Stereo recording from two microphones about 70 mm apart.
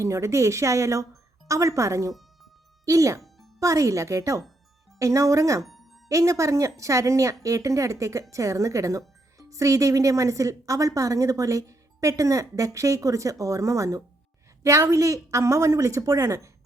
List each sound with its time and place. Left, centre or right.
0.0 s speech: right
5.6 s music: centre
6.1 s speech: right